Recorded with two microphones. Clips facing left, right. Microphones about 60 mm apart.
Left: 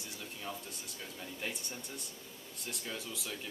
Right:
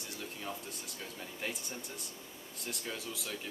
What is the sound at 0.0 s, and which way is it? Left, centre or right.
A man's voice, centre.